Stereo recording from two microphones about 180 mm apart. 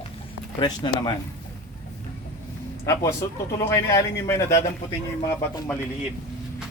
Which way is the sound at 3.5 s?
15° left (ahead or behind).